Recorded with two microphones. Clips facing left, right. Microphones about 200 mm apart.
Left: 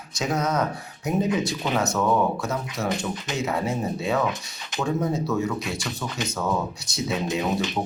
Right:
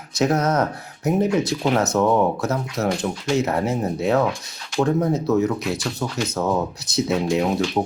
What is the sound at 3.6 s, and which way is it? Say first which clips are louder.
Speech: right 4 dB; 20° right (ahead or behind).